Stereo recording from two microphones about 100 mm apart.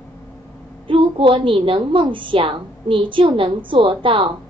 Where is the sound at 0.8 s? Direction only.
60° right (ahead or behind).